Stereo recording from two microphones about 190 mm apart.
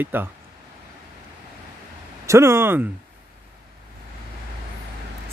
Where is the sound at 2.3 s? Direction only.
15° right (ahead or behind).